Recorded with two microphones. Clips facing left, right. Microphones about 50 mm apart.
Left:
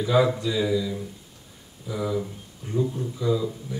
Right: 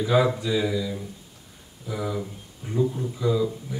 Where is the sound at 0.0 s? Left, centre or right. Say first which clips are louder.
Even; centre.